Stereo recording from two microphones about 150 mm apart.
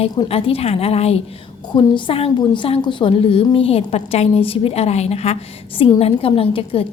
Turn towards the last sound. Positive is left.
turn(degrees=40)  # may be behind; listen again after turning